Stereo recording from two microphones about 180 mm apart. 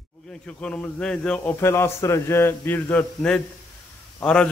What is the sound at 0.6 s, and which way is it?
A man's voice, 5° left (ahead or behind).